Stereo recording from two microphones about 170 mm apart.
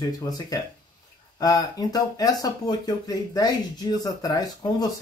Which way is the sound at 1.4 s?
20° left (ahead or behind).